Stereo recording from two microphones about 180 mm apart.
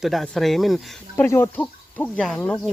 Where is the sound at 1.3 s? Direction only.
10° left (ahead or behind).